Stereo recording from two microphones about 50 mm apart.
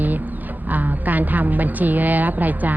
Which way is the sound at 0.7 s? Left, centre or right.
Right.